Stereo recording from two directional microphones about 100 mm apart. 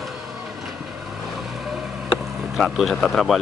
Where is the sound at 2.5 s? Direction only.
Centre (ahead or behind).